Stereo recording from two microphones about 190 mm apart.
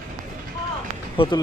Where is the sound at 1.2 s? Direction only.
25° left (ahead or behind).